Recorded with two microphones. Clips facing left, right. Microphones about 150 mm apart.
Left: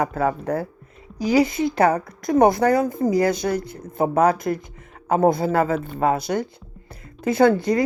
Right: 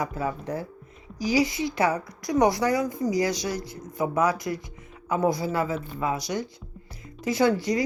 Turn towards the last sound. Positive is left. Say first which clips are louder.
# left 6 dB
turn(degrees=55)  # may be behind; listen again after turning